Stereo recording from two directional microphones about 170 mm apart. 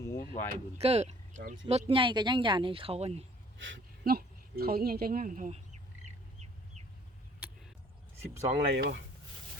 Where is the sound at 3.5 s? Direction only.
90° right; by 5.6 s 50° right (ahead or behind).